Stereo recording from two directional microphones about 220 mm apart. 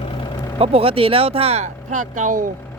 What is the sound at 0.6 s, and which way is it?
Speech, 25° right (ahead or behind).